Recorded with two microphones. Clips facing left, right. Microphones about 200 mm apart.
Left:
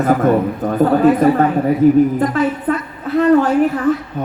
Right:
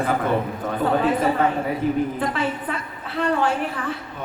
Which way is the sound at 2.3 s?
45° left (ahead or behind).